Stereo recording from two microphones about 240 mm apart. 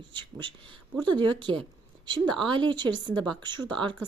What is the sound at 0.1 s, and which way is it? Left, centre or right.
Speech, centre.